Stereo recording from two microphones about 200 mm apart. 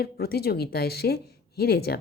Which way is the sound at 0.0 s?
50° left (ahead or behind).